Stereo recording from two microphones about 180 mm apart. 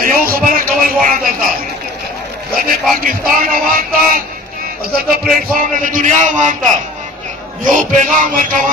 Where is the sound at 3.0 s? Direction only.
50° right (ahead or behind).